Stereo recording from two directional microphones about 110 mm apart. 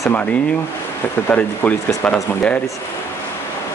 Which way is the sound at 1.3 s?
15° left (ahead or behind).